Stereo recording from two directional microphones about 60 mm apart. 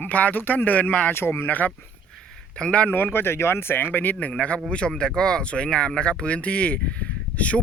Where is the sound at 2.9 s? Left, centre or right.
Left.